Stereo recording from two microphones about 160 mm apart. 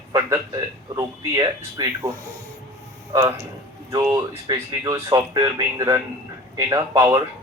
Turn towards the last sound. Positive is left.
turn(degrees=-20)  # may be behind; listen again after turning